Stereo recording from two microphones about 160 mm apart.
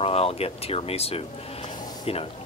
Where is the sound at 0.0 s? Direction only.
35° left (ahead or behind).